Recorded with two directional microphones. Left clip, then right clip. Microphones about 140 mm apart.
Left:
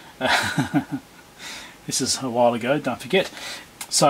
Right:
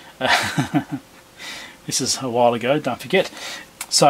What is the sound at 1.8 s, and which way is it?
Speech, 20° right (ahead or behind).